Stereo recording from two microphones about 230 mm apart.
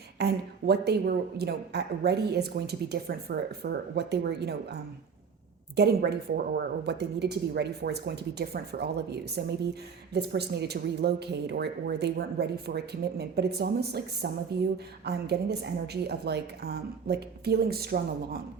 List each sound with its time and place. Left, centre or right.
0.2 s speech: right
5.7 s speech: right